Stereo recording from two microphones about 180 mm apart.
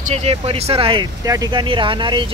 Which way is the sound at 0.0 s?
35° right (ahead or behind).